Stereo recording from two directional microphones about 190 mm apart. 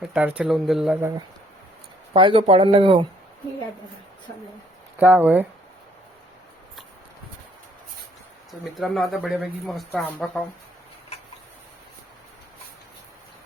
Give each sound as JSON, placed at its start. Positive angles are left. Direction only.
{"t": 0.0, "sound": "speech", "side_deg": -5}
{"t": 2.1, "sound": "speech", "side_deg": -30}
{"t": 4.9, "sound": "speech", "side_deg": -10}
{"t": 8.7, "sound": "speech", "side_deg": 0}